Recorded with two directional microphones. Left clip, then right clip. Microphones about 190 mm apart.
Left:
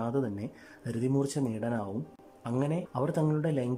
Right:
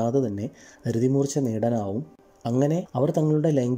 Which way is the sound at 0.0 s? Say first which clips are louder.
Right 8 dB; 15° right (ahead or behind).